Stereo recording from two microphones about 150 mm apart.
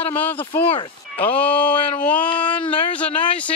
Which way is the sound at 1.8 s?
35° left (ahead or behind).